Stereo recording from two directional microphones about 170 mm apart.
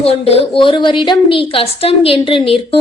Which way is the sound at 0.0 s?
35° left (ahead or behind).